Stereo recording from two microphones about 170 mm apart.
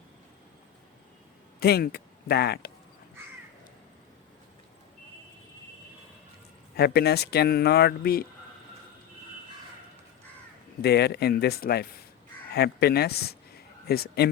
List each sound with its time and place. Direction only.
1.5 s speech: 65° left (ahead or behind)
6.7 s speech: 70° left (ahead or behind)
10.8 s speech: 75° left (ahead or behind)